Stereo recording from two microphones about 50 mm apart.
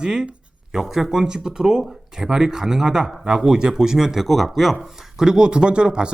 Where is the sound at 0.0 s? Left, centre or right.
Centre.